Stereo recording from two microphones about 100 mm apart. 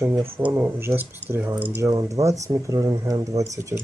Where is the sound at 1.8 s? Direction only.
35° right (ahead or behind).